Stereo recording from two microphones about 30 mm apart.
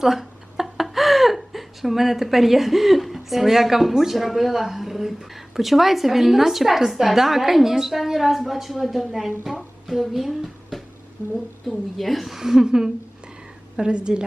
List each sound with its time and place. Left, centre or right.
0.0 s speech: centre
9.5 s music: centre
11.7 s a woman's voice: centre
12.4 s speech: centre
13.7 s a woman's voice: right